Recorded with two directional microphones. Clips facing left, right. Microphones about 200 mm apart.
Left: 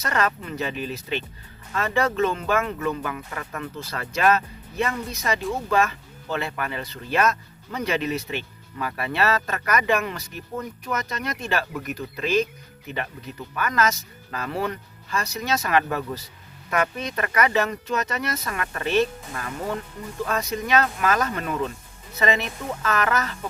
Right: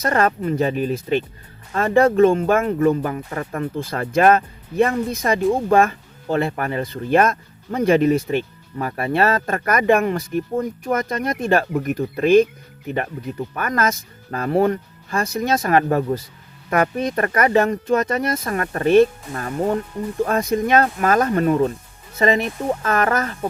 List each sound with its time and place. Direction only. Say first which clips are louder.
0.0 s speech: right 6 dB; 50° right (ahead or behind)
2.6 s speech: right 8 dB; 35° right (ahead or behind)
3.8 s speech: right 9 dB; 50° right (ahead or behind)
13.5 s speech: right 1 dB; 50° right (ahead or behind)
18.4 s speech: right 9 dB; 40° right (ahead or behind)